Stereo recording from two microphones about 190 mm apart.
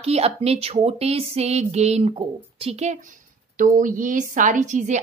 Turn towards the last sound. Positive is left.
turn(degrees=-40)  # may be behind; listen again after turning